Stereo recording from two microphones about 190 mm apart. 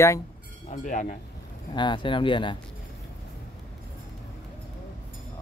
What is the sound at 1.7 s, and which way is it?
Speech, 25° left (ahead or behind).